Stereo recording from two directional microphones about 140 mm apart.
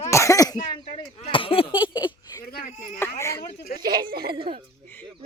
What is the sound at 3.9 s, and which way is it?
Speech, 90° right.